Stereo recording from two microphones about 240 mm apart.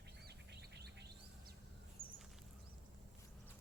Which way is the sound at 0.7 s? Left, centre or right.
Right.